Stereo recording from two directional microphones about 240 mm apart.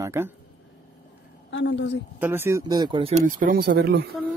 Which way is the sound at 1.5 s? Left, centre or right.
Left.